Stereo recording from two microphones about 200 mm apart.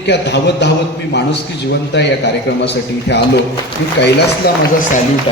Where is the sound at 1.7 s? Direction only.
60° left (ahead or behind).